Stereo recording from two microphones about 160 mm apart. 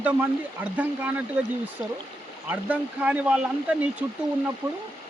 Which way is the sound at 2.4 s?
10° right (ahead or behind).